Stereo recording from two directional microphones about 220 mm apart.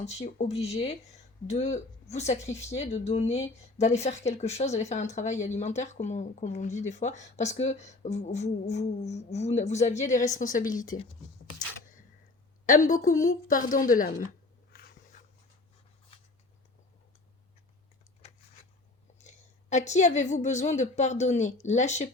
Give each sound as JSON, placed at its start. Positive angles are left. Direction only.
{"t": 0.0, "sound": "speech", "side_deg": 30}
{"t": 12.6, "sound": "speech", "side_deg": 35}
{"t": 19.2, "sound": "speech", "side_deg": 30}